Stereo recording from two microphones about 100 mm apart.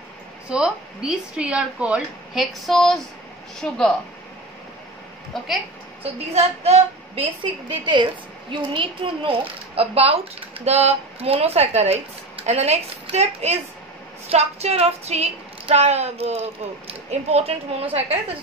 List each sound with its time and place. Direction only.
0.5 s a woman's voice: 10° right (ahead or behind)
2.3 s speech: centre (ahead or behind)
5.3 s speech: 5° left (ahead or behind)
6.3 s a woman's voice: 90° right